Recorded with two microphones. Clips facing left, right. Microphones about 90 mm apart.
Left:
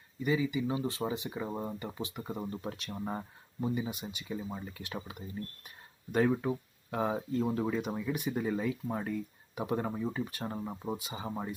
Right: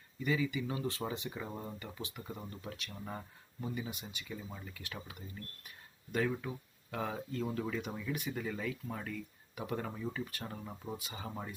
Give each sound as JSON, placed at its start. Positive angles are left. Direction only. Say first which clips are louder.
{"t": 0.2, "sound": "speech", "louder": "left 4 dB", "side_deg": 20}
{"t": 1.5, "sound": "speech", "louder": "left 6 dB", "side_deg": 25}
{"t": 7.0, "sound": "speech", "louder": "left 7 dB", "side_deg": 25}